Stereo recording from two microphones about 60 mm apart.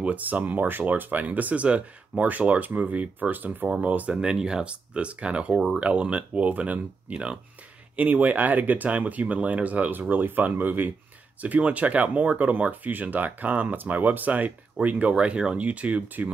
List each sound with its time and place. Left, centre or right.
0.0 s speech: right
4.2 s speech: centre